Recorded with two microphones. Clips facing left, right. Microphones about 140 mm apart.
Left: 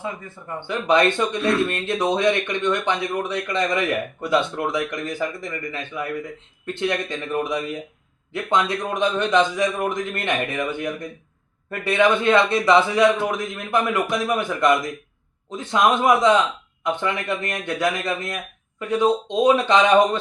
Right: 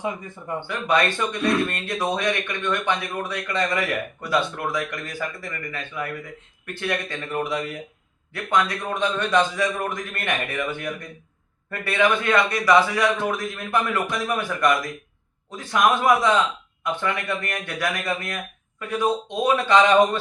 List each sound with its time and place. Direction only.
0.0 s speech: 15° right (ahead or behind)
0.7 s speech: 20° left (ahead or behind)